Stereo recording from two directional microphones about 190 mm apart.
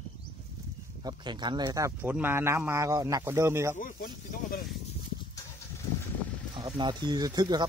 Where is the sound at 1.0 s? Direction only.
25° right (ahead or behind).